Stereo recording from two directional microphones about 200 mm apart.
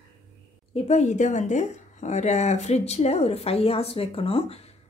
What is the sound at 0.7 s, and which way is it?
Speech, 35° left (ahead or behind).